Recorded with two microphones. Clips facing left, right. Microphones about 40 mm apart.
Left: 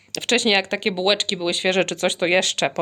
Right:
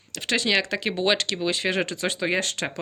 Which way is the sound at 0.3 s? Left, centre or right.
Left.